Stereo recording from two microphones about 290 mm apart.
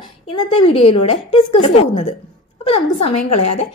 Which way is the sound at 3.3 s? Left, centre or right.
Left.